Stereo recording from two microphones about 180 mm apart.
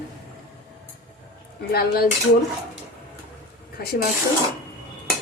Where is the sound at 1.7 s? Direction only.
60° left (ahead or behind).